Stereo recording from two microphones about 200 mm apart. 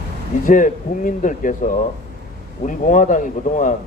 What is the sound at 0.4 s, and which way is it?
A man's voice, 40° left (ahead or behind).